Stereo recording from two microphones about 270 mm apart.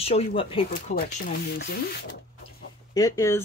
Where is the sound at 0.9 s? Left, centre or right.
Left.